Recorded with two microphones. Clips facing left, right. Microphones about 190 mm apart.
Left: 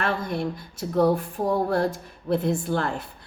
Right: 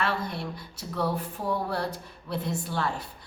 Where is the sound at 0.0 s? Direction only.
50° left (ahead or behind).